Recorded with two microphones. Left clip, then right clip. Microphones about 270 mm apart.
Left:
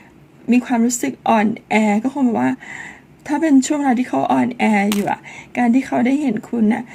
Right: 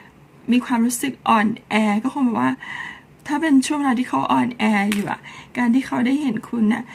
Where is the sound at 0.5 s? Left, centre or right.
Centre.